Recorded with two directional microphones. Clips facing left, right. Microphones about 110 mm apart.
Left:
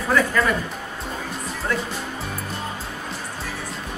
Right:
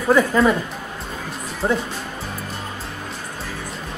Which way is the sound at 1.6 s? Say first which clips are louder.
Right 5 dB; 30° right (ahead or behind).